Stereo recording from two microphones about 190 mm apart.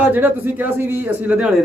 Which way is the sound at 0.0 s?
10° right (ahead or behind).